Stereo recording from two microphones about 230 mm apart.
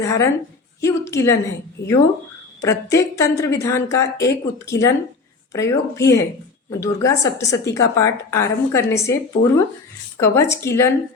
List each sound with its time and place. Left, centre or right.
0.0 s a woman's voice: centre
2.6 s a woman's voice: centre
9.4 s speech: left
10.2 s a woman's voice: centre